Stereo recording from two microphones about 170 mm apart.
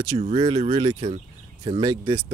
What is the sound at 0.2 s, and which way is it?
Speech, 35° right (ahead or behind).